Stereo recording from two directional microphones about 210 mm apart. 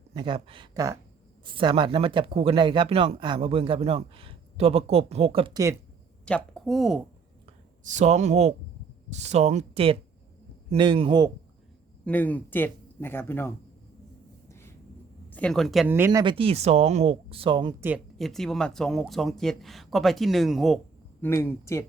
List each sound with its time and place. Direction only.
0.1 s speech: 25° right (ahead or behind)
6.2 s speech: 5° left (ahead or behind)
7.9 s speech: 35° right (ahead or behind)
12.0 s speech: 10° left (ahead or behind)
15.3 s speech: 5° left (ahead or behind); by 17.7 s 25° right (ahead or behind)
17.7 s speech: 10° right (ahead or behind)
21.2 s speech: 10° left (ahead or behind)